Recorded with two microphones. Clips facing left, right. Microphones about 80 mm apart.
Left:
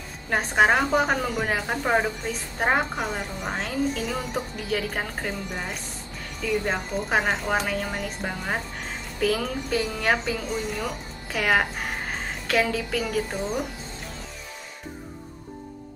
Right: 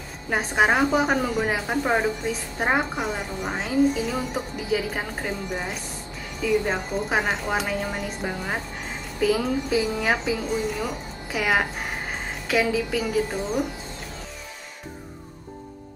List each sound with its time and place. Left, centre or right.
0.3 s a woman's voice: centre